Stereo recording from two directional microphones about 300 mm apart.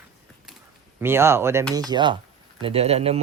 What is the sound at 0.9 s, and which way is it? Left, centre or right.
Speech, centre.